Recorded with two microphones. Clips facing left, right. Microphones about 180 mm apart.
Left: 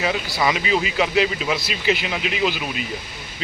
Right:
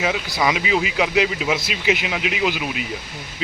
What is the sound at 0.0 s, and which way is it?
Speech, 5° right (ahead or behind).